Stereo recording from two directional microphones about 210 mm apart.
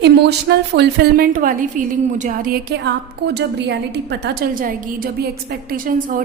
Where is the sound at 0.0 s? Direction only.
55° right (ahead or behind).